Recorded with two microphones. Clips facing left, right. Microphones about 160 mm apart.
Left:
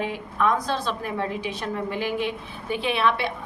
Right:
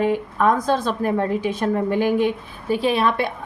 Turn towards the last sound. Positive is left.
turn(degrees=-40)  # may be behind; listen again after turning